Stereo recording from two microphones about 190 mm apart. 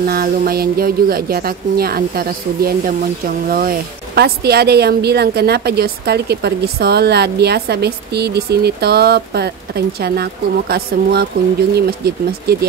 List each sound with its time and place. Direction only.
0.0 s speech: 50° right (ahead or behind)